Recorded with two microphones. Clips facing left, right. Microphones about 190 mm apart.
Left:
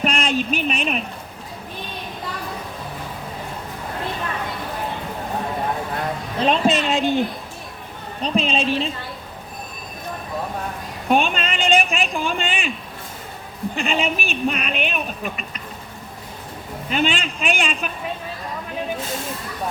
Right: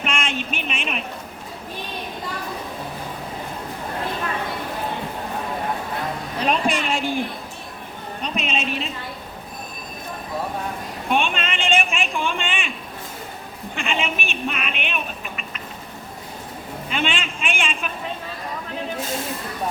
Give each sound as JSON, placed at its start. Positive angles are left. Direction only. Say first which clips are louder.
{"t": 0.0, "sound": "a sound", "louder": "left 5 dB", "side_deg": 35}
{"t": 6.4, "sound": "a woman's voice", "louder": "left 4 dB", "side_deg": 25}
{"t": 8.2, "sound": "a woman's voice", "louder": "left 6 dB", "side_deg": 30}
{"t": 11.1, "sound": "a woman's voice", "louder": "left 3 dB", "side_deg": 40}
{"t": 13.7, "sound": "a woman's voice", "louder": "left 3 dB", "side_deg": 35}
{"t": 16.9, "sound": "a woman's voice", "louder": "left 4 dB", "side_deg": 40}